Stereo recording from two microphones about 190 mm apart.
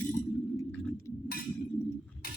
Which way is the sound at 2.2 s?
50° left (ahead or behind).